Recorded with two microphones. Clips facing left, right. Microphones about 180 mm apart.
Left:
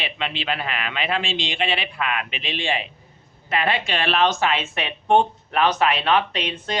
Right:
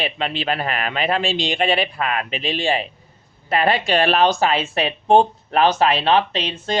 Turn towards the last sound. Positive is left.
turn(degrees=-30)  # may be behind; listen again after turning